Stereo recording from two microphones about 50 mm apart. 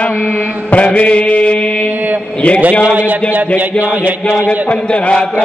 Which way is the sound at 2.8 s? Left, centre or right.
Right.